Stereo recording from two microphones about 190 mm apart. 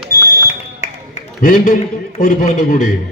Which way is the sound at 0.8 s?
40° left (ahead or behind).